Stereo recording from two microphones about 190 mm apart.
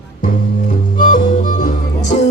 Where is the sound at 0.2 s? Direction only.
50° left (ahead or behind).